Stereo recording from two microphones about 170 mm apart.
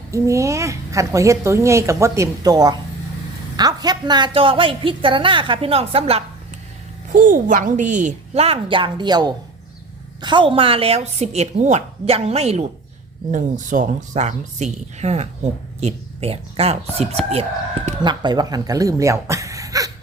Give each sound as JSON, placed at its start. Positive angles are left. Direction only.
{"t": 0.1, "sound": "a woman's voice", "side_deg": -20}
{"t": 7.1, "sound": "a woman's voice", "side_deg": -50}
{"t": 13.3, "sound": "a woman's voice", "side_deg": -50}
{"t": 18.0, "sound": "speech", "side_deg": -25}